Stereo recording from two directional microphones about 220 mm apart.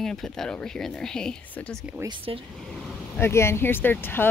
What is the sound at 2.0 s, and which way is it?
Speech, 20° right (ahead or behind).